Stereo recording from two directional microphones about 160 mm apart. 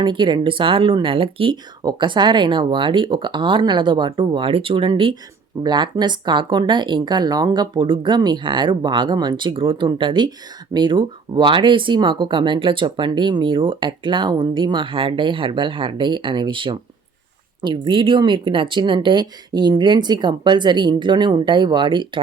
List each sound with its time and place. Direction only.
0.0 s speech: 30° right (ahead or behind)